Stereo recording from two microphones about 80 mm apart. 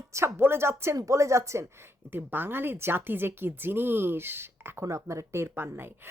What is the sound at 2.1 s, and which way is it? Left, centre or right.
A woman's voice, right.